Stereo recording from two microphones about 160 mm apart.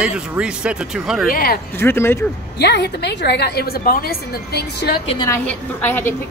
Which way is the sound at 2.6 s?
90° left.